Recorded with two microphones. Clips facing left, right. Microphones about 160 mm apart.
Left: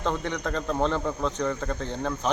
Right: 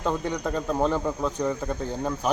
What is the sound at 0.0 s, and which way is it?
Speech, 10° right (ahead or behind).